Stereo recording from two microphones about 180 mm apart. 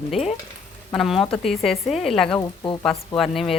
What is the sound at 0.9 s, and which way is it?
Speech, centre (ahead or behind).